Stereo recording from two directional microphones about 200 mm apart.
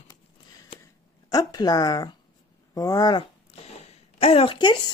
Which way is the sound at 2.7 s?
15° left (ahead or behind).